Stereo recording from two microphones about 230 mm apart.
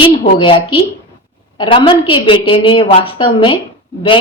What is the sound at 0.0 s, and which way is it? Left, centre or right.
A woman's voice, left.